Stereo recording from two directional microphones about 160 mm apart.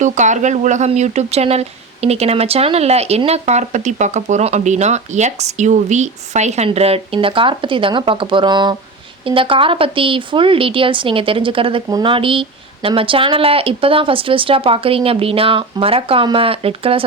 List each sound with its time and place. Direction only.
0.0 s speech: 50° right (ahead or behind)